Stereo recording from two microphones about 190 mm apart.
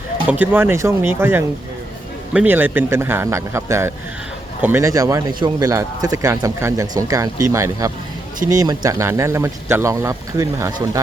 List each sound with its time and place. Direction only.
0.3 s speech: 10° right (ahead or behind)